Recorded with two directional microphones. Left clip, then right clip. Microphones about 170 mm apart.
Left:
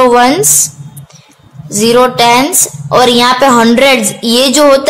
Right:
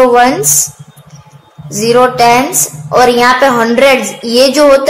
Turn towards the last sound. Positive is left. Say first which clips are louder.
# right 1 dB
turn(degrees=55)  # may be behind; listen again after turning